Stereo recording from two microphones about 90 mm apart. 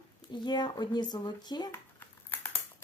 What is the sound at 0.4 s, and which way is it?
Speech, 50° left (ahead or behind).